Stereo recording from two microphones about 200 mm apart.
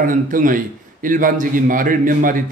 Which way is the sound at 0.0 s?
40° right (ahead or behind).